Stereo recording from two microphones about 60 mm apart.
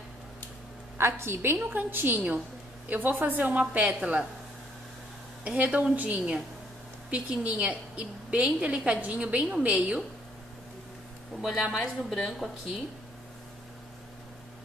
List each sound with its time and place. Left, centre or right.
0.9 s a woman's voice: right; by 4.2 s centre
5.4 s a woman's voice: right
11.7 s a woman's voice: centre